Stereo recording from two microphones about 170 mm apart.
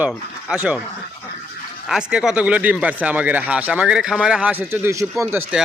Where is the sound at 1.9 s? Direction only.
5° right (ahead or behind).